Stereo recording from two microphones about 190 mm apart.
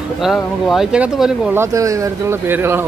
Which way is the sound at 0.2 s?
Centre (ahead or behind).